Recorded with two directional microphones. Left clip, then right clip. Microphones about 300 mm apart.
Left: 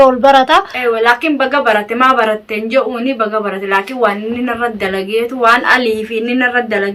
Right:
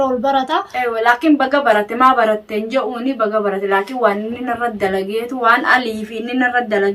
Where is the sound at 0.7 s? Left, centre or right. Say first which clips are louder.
Left 3 dB; centre.